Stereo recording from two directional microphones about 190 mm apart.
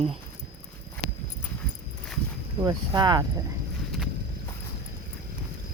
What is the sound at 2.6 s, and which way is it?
Speech, 20° right (ahead or behind).